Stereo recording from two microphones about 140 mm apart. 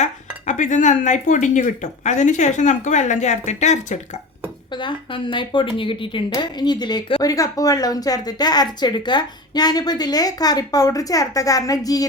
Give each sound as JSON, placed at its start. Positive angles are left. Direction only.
{"t": 0.0, "sound": "speech", "side_deg": 60}
{"t": 4.7, "sound": "a woman's voice", "side_deg": 35}